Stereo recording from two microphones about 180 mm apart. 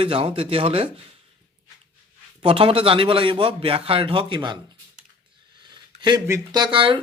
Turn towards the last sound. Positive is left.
turn(degrees=-30)  # may be behind; listen again after turning